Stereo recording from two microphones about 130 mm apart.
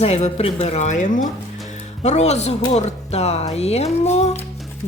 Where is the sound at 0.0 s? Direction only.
55° left (ahead or behind); by 1.3 s 80° left.